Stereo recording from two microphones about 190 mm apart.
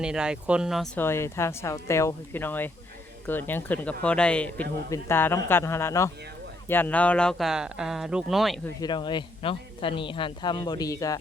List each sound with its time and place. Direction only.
0.0 s speech: 5° right (ahead or behind)
0.9 s a man's voice: 15° left (ahead or behind)
8.6 s speech: 20° left (ahead or behind)